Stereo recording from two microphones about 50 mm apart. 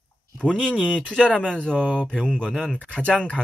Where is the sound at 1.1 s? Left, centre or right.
Left.